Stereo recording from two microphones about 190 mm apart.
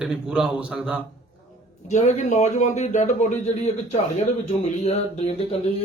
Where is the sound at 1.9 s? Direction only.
35° left (ahead or behind).